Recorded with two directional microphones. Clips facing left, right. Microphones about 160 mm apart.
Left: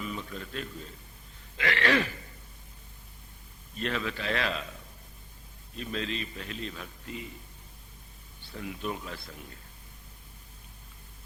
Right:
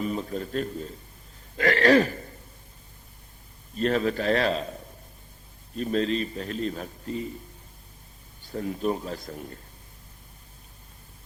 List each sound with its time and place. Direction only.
0.0 s a man's voice: 40° right (ahead or behind)
1.5 s throat clearing: 40° right (ahead or behind)
3.8 s a man's voice: 40° right (ahead or behind)
8.4 s a man's voice: 40° right (ahead or behind)